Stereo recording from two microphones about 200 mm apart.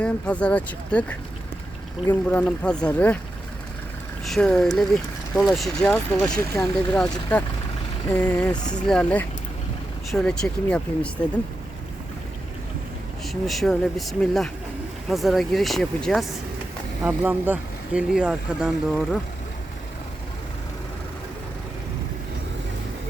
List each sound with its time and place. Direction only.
0.0 s speech: 5° left (ahead or behind)
4.3 s speech: 5° left (ahead or behind)
6.2 s speech: 15° left (ahead or behind)
6.9 s speech: 5° left (ahead or behind)
13.2 s speech: centre (ahead or behind)